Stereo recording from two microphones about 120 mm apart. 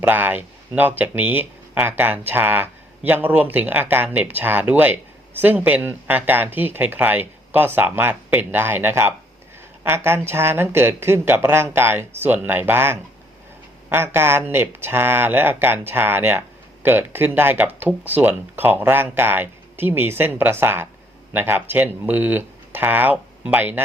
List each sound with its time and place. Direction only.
0.0 s speech: 15° right (ahead or behind)